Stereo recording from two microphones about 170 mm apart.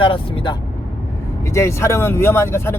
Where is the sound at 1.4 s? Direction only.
15° left (ahead or behind).